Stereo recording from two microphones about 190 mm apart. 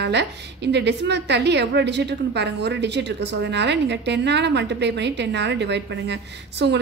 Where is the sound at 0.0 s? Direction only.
65° right (ahead or behind).